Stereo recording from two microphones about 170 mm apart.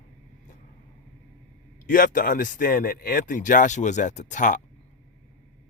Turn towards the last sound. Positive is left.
turn(degrees=50)  # may be behind; listen again after turning